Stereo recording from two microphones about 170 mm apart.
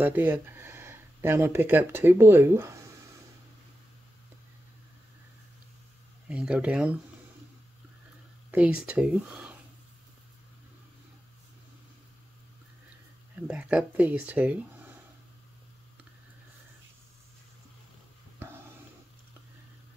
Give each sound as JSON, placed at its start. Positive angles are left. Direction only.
{"t": 0.0, "sound": "speech", "side_deg": -10}
{"t": 6.2, "sound": "speech", "side_deg": -5}
{"t": 8.5, "sound": "speech", "side_deg": -5}
{"t": 13.5, "sound": "speech", "side_deg": -5}